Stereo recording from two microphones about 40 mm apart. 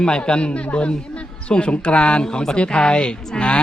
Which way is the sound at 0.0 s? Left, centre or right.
Left.